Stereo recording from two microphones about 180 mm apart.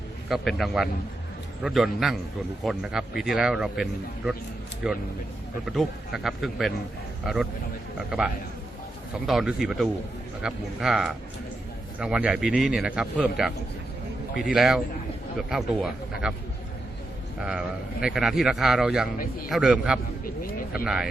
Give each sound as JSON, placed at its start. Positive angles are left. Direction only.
{"t": 0.3, "sound": "a man's voice", "side_deg": 0}
{"t": 7.9, "sound": "a man's voice", "side_deg": -5}
{"t": 17.4, "sound": "a man's voice", "side_deg": -5}
{"t": 20.4, "sound": "speech", "side_deg": 55}
{"t": 20.7, "sound": "a man's voice", "side_deg": -5}